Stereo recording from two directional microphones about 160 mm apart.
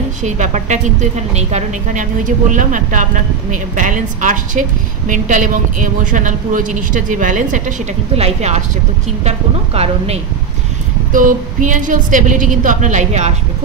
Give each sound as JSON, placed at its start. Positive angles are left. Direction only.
{"t": 0.2, "sound": "a woman's voice", "side_deg": -50}
{"t": 9.8, "sound": "speech", "side_deg": -40}
{"t": 11.1, "sound": "a woman's voice", "side_deg": -55}